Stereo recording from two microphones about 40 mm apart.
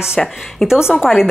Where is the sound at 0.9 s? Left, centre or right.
Centre.